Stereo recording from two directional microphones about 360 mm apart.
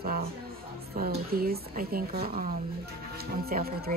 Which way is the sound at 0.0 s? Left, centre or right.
Right.